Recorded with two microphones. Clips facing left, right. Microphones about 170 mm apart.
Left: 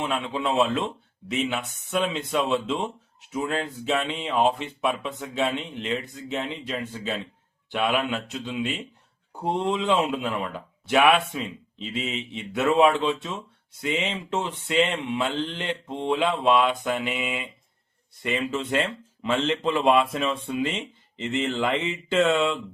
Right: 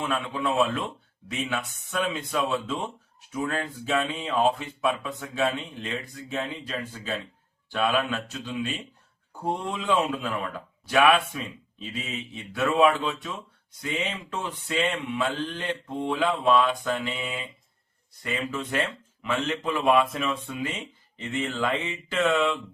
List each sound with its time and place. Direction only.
0.0 s speech: 25° left (ahead or behind)